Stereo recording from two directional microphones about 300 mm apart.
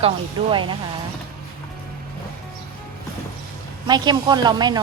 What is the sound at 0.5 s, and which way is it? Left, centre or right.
Speech, centre.